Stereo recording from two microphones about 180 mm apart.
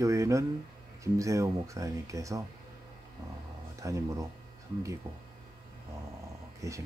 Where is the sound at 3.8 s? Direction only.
20° right (ahead or behind).